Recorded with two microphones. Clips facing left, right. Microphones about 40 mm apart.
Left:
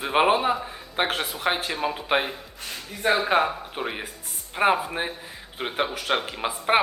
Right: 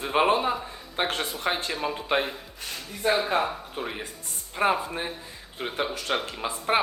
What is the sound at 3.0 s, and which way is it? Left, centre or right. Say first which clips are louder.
Speech: left 2 dB; left.